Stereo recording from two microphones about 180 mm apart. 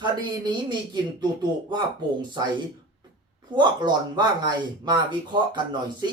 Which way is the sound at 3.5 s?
25° right (ahead or behind).